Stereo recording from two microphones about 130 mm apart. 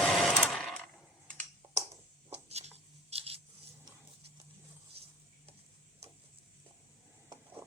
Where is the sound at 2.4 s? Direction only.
55° right (ahead or behind).